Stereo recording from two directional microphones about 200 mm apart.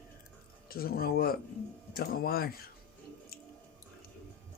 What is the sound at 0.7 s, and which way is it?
Speech, 50° left (ahead or behind).